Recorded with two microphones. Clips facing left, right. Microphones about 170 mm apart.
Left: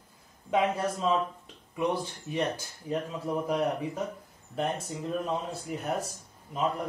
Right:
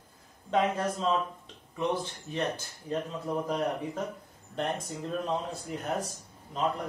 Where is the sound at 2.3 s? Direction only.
10° left (ahead or behind).